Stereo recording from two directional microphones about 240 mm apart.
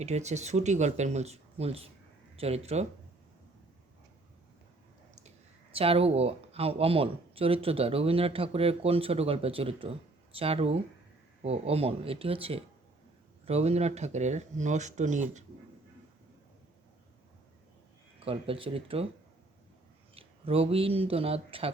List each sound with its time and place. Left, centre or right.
0.0 s speech: right
5.7 s speech: right
18.3 s speech: right
20.1 s speech: right